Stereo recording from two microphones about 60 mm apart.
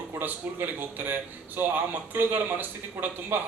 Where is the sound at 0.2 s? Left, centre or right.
Right.